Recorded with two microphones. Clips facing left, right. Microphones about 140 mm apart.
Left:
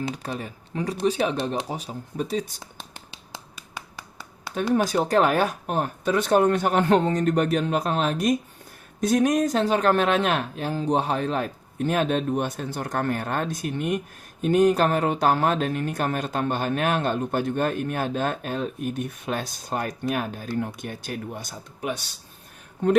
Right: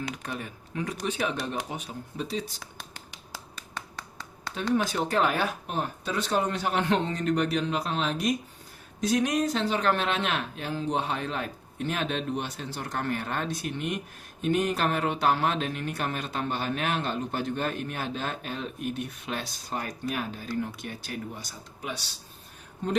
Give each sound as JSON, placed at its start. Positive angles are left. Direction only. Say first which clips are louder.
{"t": 0.0, "sound": "speech", "louder": "left 5 dB", "side_deg": 35}
{"t": 2.1, "sound": "speech", "louder": "left 5 dB", "side_deg": 45}
{"t": 3.8, "sound": "finger snapping", "louder": "left 1 dB", "side_deg": 5}
{"t": 4.7, "sound": "speech", "louder": "left 5 dB", "side_deg": 45}